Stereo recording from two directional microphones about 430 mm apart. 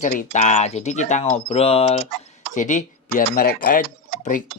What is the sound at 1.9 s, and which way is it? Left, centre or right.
Tick-tock, right.